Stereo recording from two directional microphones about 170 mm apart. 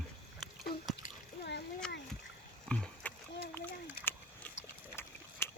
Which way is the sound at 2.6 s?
5° left (ahead or behind).